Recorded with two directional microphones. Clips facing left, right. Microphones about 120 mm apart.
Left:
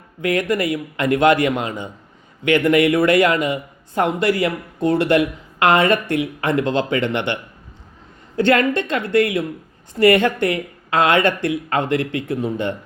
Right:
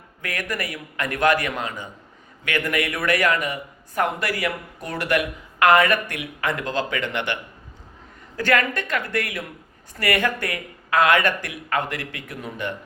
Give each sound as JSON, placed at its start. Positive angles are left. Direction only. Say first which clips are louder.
{"t": 0.2, "sound": "a man's voice", "louder": "left 10 dB", "side_deg": 20}
{"t": 8.4, "sound": "a man's voice", "louder": "left 6 dB", "side_deg": 25}